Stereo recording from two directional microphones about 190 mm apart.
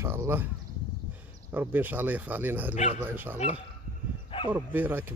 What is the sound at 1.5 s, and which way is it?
Speech, 10° right (ahead or behind).